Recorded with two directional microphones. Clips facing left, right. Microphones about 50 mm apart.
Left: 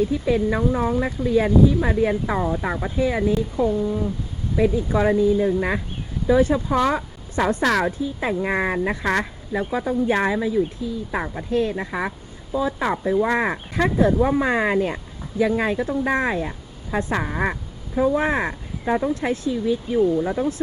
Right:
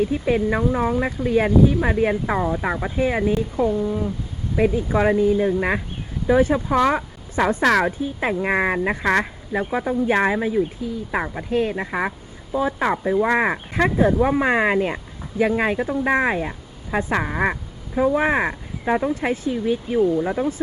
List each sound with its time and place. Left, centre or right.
0.0 s speech: right
14.0 s speech: right
20.2 s speech: right